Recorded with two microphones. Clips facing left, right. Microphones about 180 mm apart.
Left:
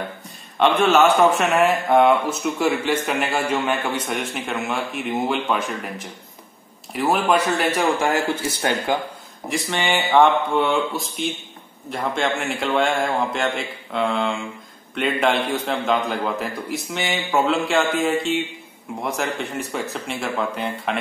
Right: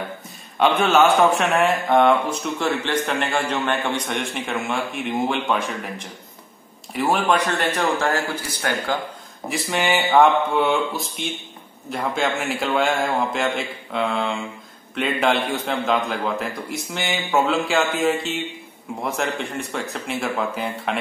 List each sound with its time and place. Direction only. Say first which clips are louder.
0.6 s speech: left 1 dB; centre (ahead or behind)
8.4 s speech: left 3 dB; 20° left (ahead or behind)
9.5 s speech: right 1 dB; 5° right (ahead or behind)